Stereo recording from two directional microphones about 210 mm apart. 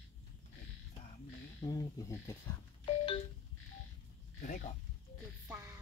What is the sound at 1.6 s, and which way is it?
Speech, 20° left (ahead or behind).